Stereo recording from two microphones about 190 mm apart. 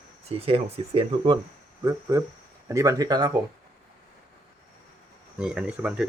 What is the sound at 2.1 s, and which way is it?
Speech, 15° right (ahead or behind).